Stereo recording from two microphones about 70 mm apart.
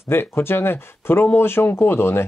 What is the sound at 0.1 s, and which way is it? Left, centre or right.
Speech, left.